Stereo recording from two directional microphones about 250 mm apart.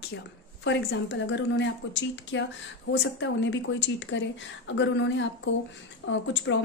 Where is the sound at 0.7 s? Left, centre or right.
Left.